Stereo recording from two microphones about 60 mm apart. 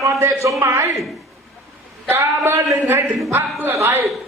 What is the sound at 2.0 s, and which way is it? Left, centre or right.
Speech, right.